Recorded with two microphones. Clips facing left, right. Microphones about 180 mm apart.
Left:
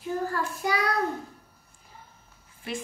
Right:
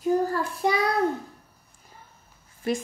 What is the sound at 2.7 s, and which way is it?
Speech, 40° right (ahead or behind).